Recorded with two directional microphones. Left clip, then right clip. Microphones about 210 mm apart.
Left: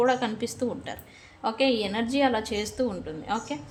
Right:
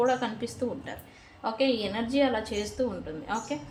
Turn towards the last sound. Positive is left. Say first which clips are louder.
# left 2 dB
turn(degrees=30)  # may be behind; listen again after turning